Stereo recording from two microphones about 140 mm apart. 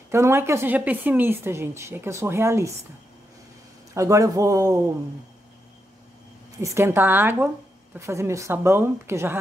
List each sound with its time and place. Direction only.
0.1 s a woman's voice: 20° right (ahead or behind)
3.9 s a woman's voice: 20° right (ahead or behind)
6.6 s a woman's voice: 20° right (ahead or behind)